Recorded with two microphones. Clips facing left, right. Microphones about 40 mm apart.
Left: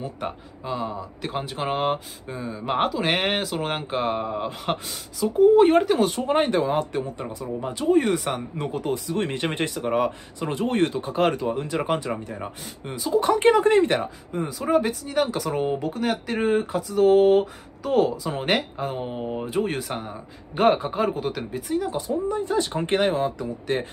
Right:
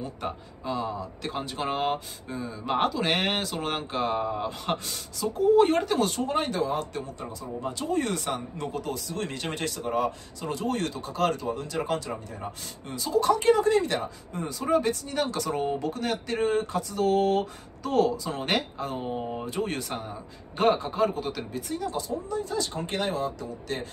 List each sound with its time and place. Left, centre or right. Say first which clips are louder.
0.0 s speech: left 2 dB; centre
4.5 s speech: left 2 dB; centre
6.2 s speech: left 6 dB; left
7.8 s speech: left 8 dB; centre
14.3 s speech: left 3 dB; centre
22.0 s speech: left 6 dB; left